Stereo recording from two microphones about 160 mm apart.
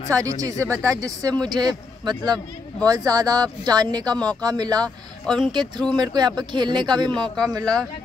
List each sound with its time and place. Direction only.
0.1 s speech: 20° right (ahead or behind)
4.8 s speech: 5° left (ahead or behind)
5.4 s speech: 25° right (ahead or behind)